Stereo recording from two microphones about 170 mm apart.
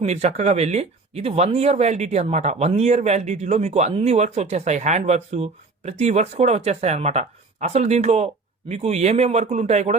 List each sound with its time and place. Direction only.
0.0 s speech: 40° right (ahead or behind)